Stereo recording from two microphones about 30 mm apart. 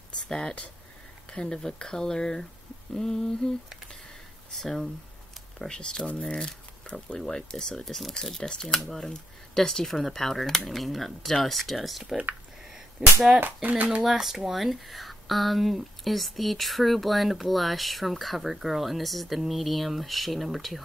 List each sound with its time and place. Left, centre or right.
0.2 s speech: left
1.3 s speech: left
1.6 s speech: left
4.5 s speech: centre
5.7 s speech: left
7.2 s speech: centre
8.5 s speech: left; by 12.0 s centre
13.0 s speech: right
13.6 s speech: right
14.1 s speech: centre